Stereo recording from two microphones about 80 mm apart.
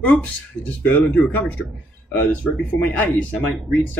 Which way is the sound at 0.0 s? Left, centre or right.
Centre.